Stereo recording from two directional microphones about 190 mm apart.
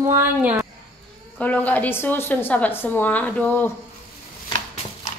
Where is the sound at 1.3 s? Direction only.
10° left (ahead or behind).